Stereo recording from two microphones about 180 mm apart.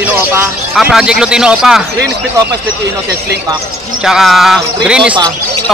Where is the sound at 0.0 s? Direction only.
10° right (ahead or behind).